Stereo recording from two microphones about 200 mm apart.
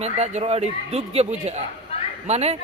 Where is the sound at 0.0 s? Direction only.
30° right (ahead or behind).